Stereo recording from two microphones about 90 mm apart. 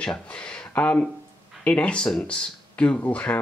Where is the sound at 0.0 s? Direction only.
10° left (ahead or behind).